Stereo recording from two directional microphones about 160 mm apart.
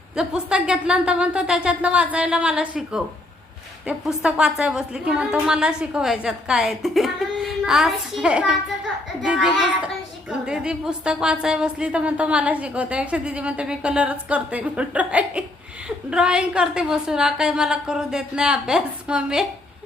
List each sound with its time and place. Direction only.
0.2 s a woman's voice: 5° right (ahead or behind)